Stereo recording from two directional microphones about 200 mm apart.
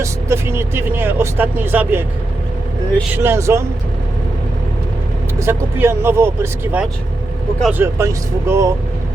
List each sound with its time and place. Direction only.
0.0 s speech: 15° right (ahead or behind)
3.2 s speech: 15° right (ahead or behind)
5.4 s speech: 10° right (ahead or behind)